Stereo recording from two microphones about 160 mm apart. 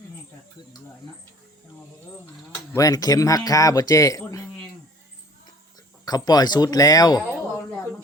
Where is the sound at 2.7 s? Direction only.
20° left (ahead or behind).